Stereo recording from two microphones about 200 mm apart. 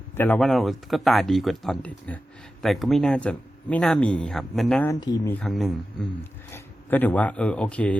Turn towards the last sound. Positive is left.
turn(degrees=5)  # may be behind; listen again after turning